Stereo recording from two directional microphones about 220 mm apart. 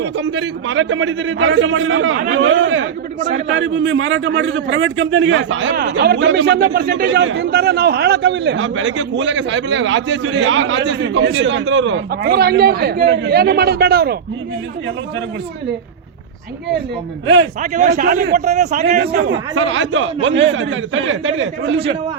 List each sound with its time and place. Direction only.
0.0 s a man's voice: 50° right (ahead or behind)
17.2 s a man's voice: 55° right (ahead or behind)
17.6 s a man's voice: 35° right (ahead or behind)
18.9 s speech: 45° right (ahead or behind)
19.3 s a man's voice: 60° right (ahead or behind)